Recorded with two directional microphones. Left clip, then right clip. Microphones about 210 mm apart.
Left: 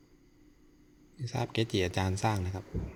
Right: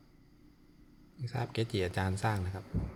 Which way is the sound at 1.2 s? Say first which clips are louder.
Left 4 dB; 20° left (ahead or behind).